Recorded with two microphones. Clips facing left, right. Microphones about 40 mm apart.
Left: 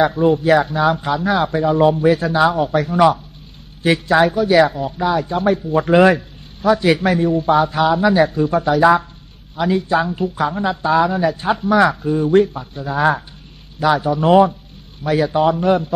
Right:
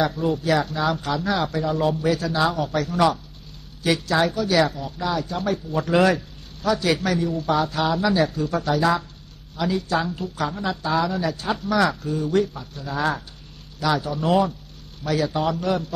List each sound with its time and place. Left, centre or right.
0.0 s speech: left